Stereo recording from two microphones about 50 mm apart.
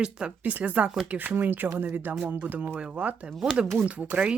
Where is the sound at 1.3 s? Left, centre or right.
Right.